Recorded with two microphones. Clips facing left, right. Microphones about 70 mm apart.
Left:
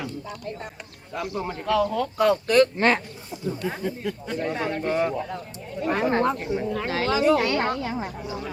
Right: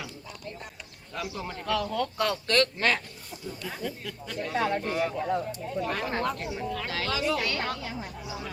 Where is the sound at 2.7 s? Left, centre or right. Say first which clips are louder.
Left 6 dB; left.